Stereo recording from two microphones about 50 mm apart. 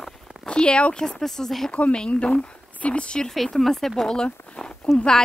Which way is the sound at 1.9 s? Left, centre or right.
Centre.